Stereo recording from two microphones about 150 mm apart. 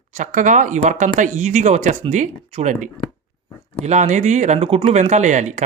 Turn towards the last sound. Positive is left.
turn(degrees=-55)  # may be behind; listen again after turning